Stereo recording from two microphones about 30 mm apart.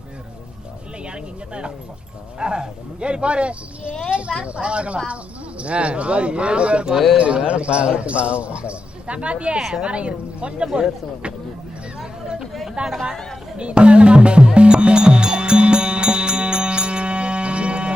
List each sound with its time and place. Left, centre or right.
1.0 s a sound: right
2.4 s speech: right
12.8 s speech: right
13.6 s music: right